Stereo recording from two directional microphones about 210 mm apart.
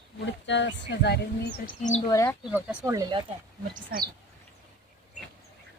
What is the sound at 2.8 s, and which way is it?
Speech, 20° right (ahead or behind).